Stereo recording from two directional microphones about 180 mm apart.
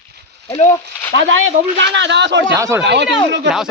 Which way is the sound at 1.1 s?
90° right.